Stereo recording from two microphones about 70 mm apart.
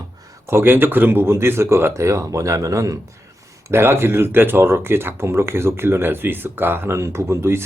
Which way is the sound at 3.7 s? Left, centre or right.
Right.